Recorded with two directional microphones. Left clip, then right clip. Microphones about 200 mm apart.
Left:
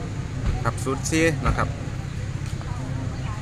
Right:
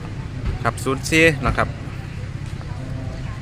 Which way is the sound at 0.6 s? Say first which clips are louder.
Right 5 dB; 40° right (ahead or behind).